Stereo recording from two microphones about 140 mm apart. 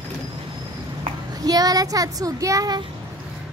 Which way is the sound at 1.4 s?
25° right (ahead or behind).